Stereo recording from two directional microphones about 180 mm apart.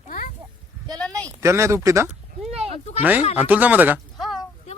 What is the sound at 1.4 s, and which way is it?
Speech, 15° right (ahead or behind).